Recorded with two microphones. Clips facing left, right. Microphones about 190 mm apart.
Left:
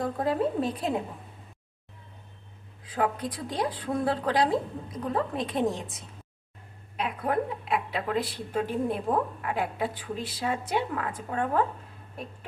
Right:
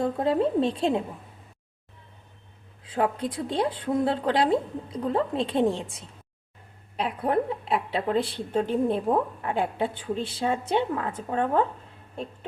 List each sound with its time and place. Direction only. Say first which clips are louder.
0.0 s a woman's voice: right 3 dB; 25° right (ahead or behind)
2.8 s a woman's voice: right 2 dB; 25° right (ahead or behind)